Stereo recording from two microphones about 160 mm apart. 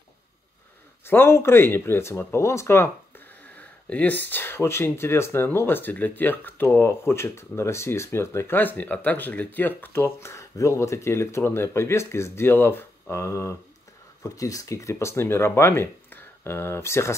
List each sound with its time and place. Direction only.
1.0 s speech: 15° left (ahead or behind)
3.4 s a sound: 10° left (ahead or behind)
4.3 s speech: 15° left (ahead or behind)